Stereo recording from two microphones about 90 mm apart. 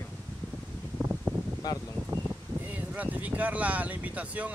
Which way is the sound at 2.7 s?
20° right (ahead or behind).